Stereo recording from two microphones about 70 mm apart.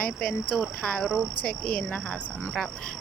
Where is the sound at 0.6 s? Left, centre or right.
Centre.